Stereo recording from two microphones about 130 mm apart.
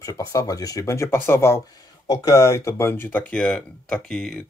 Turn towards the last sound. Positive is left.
turn(degrees=5)  # may be behind; listen again after turning